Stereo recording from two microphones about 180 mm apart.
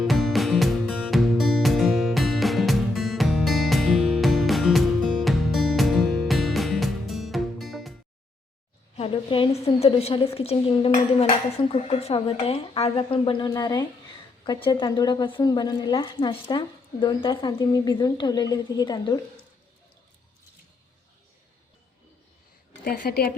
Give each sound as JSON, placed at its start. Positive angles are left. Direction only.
{"t": 0.0, "sound": "music", "side_deg": 0}
{"t": 9.0, "sound": "a sound", "side_deg": 30}
{"t": 9.6, "sound": "dishes", "side_deg": 35}
{"t": 14.4, "sound": "a woman's voice", "side_deg": 25}
{"t": 22.8, "sound": "a woman's voice", "side_deg": 55}